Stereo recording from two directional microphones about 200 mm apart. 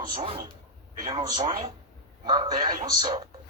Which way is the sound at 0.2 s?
25° right (ahead or behind).